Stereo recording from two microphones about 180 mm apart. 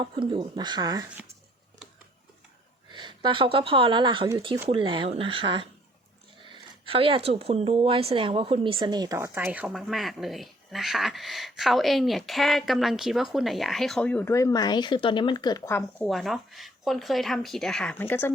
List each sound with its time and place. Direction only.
0.0 s speech: 25° right (ahead or behind)
2.9 s speech: 25° right (ahead or behind); by 16.0 s 15° left (ahead or behind)
16.0 s speech: centre (ahead or behind)